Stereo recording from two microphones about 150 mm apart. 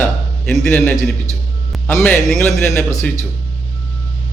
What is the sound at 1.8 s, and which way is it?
A man's voice, 10° left (ahead or behind).